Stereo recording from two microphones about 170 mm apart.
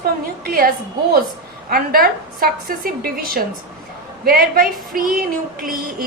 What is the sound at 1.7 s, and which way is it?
A woman's voice, 60° right (ahead or behind).